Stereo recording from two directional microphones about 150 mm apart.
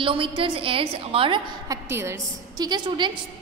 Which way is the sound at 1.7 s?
20° right (ahead or behind).